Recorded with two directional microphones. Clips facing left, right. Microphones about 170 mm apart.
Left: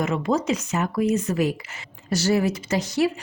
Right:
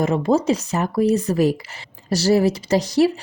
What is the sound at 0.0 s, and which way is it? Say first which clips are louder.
Speech: right 5 dB; 30° right (ahead or behind).